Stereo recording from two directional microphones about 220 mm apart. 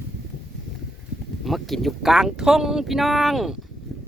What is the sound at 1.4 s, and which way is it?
Speech, centre (ahead or behind).